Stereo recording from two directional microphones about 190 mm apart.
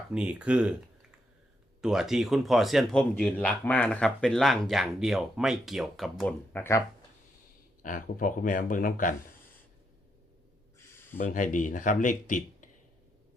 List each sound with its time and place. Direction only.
0.1 s speech: 5° right (ahead or behind)
1.8 s speech: centre (ahead or behind); by 6.8 s 15° left (ahead or behind)
7.8 s speech: 45° left (ahead or behind)
11.2 s speech: 45° left (ahead or behind)